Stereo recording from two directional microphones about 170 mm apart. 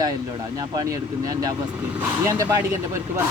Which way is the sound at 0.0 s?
20° right (ahead or behind).